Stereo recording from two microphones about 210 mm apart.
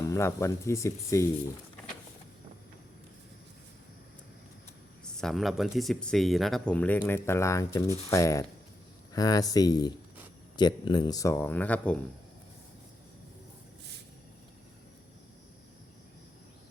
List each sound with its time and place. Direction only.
0.1 s speech: 15° left (ahead or behind)
5.1 s speech: centre (ahead or behind)